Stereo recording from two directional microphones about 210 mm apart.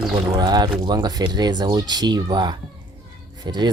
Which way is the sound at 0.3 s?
20° right (ahead or behind).